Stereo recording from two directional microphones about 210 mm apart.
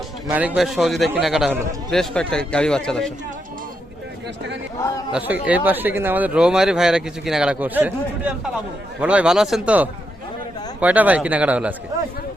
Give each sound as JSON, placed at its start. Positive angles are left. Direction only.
{"t": 0.3, "sound": "a man's voice", "side_deg": -5}
{"t": 5.1, "sound": "a man's voice", "side_deg": -5}